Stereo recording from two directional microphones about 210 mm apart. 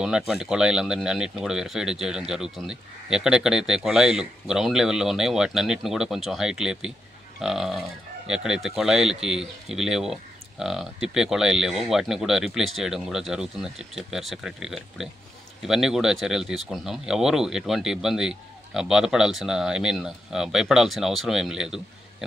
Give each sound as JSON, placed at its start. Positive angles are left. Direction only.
{"t": 0.0, "sound": "speech", "side_deg": -5}